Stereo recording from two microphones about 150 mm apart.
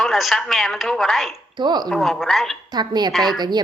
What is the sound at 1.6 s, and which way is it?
Speech, 30° right (ahead or behind).